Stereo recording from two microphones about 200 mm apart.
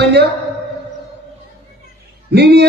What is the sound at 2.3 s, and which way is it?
Speech, 55° right (ahead or behind).